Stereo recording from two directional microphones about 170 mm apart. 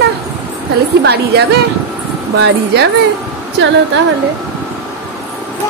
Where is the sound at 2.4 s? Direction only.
75° right (ahead or behind).